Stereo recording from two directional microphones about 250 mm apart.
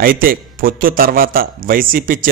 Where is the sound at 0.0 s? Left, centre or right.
Right.